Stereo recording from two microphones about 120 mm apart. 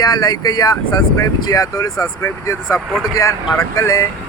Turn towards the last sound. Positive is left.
turn(degrees=25)  # may be behind; listen again after turning